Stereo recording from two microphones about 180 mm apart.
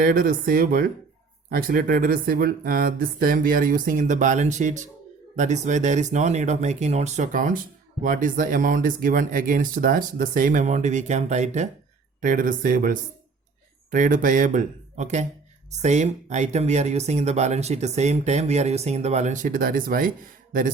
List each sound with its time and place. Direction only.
0.0 s speech: 50° right (ahead or behind)